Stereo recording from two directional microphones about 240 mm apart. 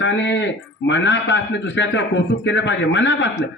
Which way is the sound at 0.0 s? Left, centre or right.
Left.